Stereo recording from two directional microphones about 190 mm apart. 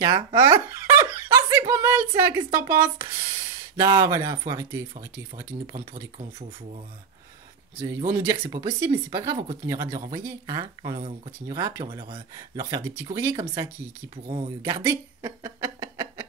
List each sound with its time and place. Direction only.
0.0 s giggle: 20° right (ahead or behind)
1.7 s speech: 10° right (ahead or behind)
8.1 s speech: 20° right (ahead or behind)
11.5 s speech: 20° right (ahead or behind)
14.1 s speech: 25° right (ahead or behind)
14.6 s speech: 15° right (ahead or behind)